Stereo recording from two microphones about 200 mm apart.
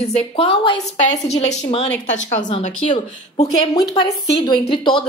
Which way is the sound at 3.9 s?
20° left (ahead or behind).